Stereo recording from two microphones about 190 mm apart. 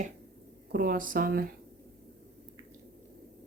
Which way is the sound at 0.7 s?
50° right (ahead or behind).